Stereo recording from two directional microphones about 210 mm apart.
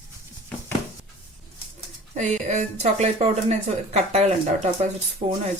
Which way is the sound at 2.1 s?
35° right (ahead or behind).